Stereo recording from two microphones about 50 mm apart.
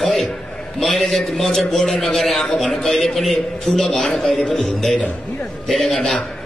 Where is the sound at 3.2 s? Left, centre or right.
Centre.